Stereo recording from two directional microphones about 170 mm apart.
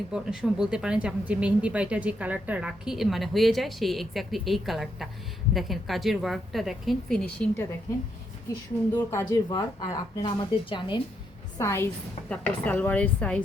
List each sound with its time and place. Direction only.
0.1 s a woman's voice: 5° right (ahead or behind)
9.0 s a woman's voice: 15° left (ahead or behind)
11.5 s a woman's voice: 15° left (ahead or behind)